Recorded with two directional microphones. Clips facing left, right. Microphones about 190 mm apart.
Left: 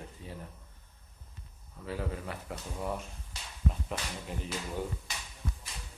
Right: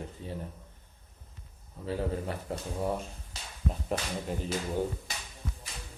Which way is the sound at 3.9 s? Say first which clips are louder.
Right 5 dB; 40° right (ahead or behind).